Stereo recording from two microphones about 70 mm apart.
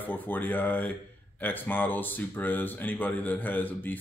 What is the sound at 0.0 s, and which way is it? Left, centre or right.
Speech, left.